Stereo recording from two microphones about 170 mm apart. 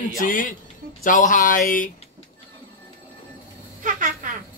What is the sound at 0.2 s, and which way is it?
Speech, 50° left (ahead or behind).